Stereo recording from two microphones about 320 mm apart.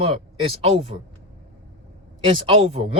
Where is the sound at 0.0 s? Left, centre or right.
Centre.